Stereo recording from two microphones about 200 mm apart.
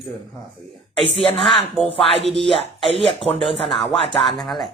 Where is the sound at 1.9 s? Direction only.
30° left (ahead or behind).